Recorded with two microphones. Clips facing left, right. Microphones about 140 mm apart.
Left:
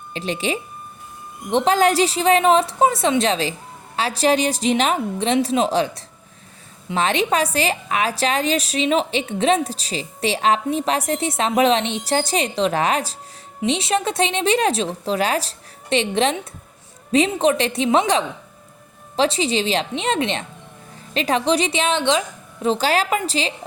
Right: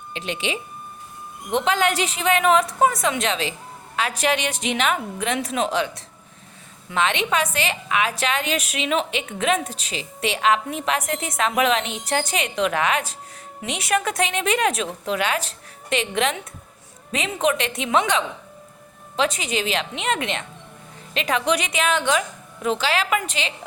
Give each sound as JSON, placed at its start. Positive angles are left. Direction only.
{"t": 0.1, "sound": "a woman's voice", "side_deg": 35}
{"t": 22.6, "sound": "a woman's voice", "side_deg": 35}